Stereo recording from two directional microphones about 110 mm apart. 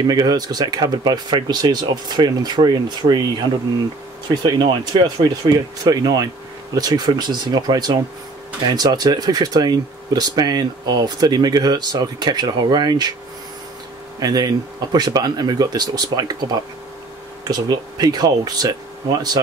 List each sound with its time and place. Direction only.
0.0 s speech: 35° right (ahead or behind)
4.4 s speech: 40° right (ahead or behind)
14.2 s speech: 35° right (ahead or behind)
17.5 s speech: 35° right (ahead or behind)